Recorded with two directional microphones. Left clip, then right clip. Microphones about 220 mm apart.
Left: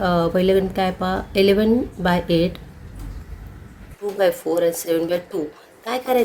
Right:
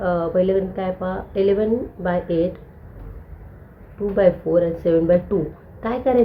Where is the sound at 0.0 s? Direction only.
45° left (ahead or behind).